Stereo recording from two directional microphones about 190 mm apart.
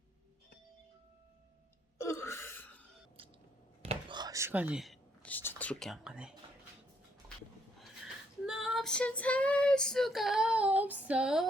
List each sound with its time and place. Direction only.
2.0 s a sound: 15° left (ahead or behind)
3.2 s squish: 30° right (ahead or behind)
3.8 s whispering: 25° right (ahead or behind); by 6.3 s 5° right (ahead or behind)
7.8 s female singing: centre (ahead or behind)